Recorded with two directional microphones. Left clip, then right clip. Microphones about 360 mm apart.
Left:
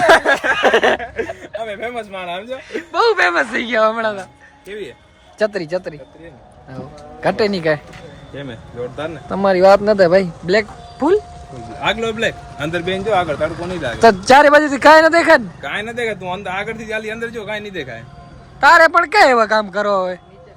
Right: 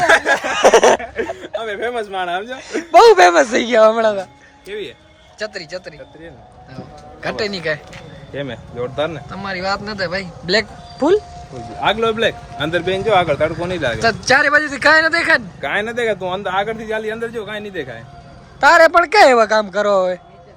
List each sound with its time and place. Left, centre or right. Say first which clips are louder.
0.0 s a sound: left 2 dB; centre
0.3 s a man's voice: right 2 dB; centre
5.4 s speech: left 8 dB; centre
7.2 s speech: left 5 dB; centre
8.4 s speech: right 3 dB; right
9.3 s speech: left 11 dB; centre
11.5 s a man's voice: right 1 dB; centre
11.8 s a man's voice: right 2 dB; centre
13.1 s speech: right 2 dB; right
14.3 s speech: left 2 dB; centre
15.6 s speech: right 3 dB; centre